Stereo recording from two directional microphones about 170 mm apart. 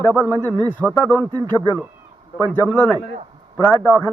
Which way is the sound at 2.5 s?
10° left (ahead or behind).